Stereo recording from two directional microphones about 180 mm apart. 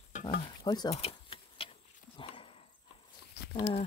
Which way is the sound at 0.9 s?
30° left (ahead or behind).